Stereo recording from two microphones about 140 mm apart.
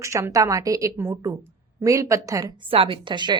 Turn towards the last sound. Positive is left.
turn(degrees=-35)  # may be behind; listen again after turning